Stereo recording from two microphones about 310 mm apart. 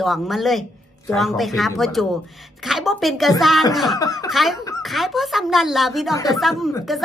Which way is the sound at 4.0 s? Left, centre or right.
Centre.